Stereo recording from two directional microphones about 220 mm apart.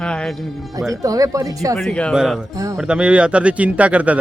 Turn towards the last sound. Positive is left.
turn(degrees=-5)  # may be behind; listen again after turning